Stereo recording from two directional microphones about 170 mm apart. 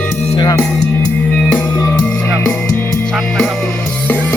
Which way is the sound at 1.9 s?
10° left (ahead or behind).